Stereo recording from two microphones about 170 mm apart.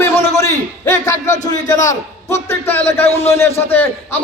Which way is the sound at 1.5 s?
20° left (ahead or behind).